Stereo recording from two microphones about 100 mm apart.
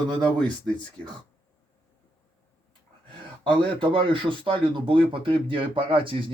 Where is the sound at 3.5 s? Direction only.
55° right (ahead or behind).